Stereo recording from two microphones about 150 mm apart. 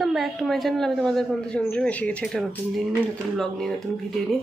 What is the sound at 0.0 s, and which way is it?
Speech, centre (ahead or behind).